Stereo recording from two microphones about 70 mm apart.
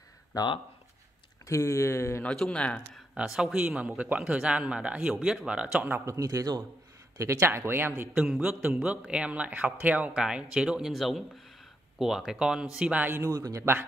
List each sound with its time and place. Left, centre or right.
1.4 s speech: left
2.2 s speech: centre
3.3 s a man's voice: centre
3.5 s speech: centre
5.9 s a man's voice: right
7.2 s speech: right
8.1 s speech: centre
13.2 s a man's voice: right